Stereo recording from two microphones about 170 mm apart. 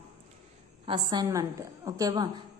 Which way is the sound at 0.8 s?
25° right (ahead or behind).